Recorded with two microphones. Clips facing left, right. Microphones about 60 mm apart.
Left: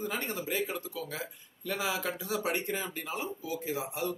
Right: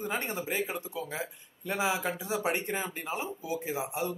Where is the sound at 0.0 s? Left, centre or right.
Right.